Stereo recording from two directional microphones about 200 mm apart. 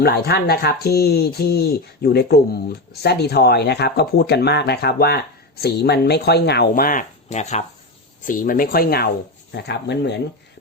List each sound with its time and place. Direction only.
0.0 s speech: 55° left (ahead or behind)